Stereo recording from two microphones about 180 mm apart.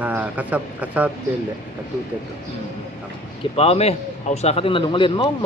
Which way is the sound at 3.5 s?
30° left (ahead or behind).